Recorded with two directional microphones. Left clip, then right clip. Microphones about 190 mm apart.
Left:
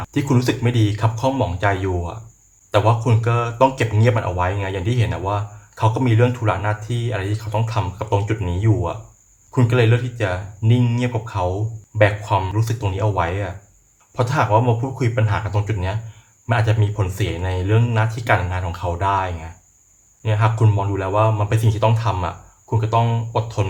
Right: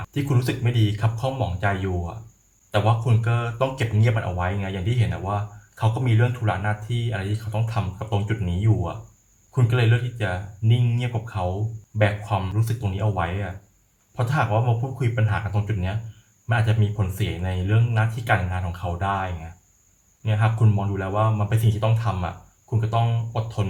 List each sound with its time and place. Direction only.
0.1 s speech: 30° left (ahead or behind)